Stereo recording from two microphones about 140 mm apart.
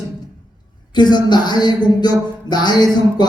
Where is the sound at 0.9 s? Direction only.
30° left (ahead or behind).